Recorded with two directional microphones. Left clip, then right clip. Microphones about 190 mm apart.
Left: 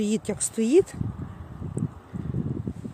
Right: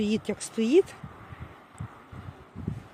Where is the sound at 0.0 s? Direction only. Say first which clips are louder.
Left 2 dB; 5° left (ahead or behind).